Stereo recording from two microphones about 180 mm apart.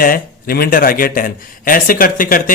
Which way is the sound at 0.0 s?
55° left (ahead or behind).